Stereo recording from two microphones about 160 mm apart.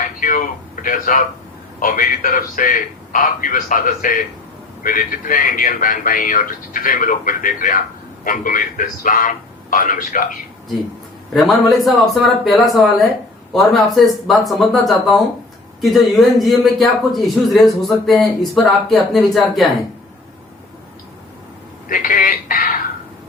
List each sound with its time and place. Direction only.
0.0 s a sound: 60° left (ahead or behind)
1.8 s a man's voice: 55° left (ahead or behind)
11.3 s a man's voice: centre (ahead or behind)
21.8 s a man's voice: 55° left (ahead or behind)